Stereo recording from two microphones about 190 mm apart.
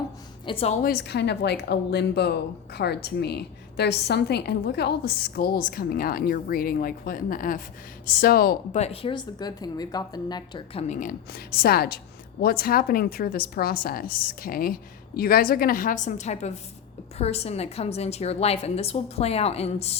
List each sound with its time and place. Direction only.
0.4 s a woman's voice: 30° left (ahead or behind)
0.8 s a woman's voice: 55° left (ahead or behind)
8.8 s a woman's voice: 30° left (ahead or behind)
10.8 s a woman's voice: 40° left (ahead or behind)
11.3 s a woman's voice: 55° left (ahead or behind); by 20.0 s 35° left (ahead or behind)